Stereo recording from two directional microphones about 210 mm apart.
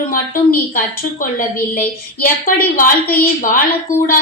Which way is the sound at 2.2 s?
40° left (ahead or behind).